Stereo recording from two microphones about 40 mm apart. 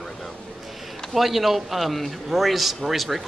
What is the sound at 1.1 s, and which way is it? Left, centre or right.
A man's voice, centre.